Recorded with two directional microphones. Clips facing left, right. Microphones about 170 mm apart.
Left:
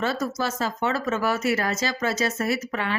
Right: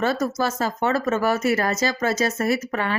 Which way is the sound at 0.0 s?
45° right (ahead or behind).